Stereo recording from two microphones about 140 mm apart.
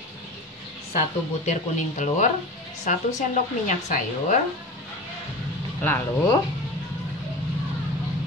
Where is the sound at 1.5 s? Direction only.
60° left (ahead or behind).